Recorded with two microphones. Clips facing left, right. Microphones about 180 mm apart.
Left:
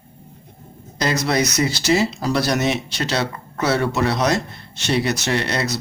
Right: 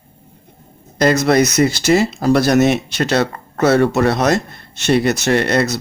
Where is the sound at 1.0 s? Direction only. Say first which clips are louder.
Right 7 dB; 55° right (ahead or behind).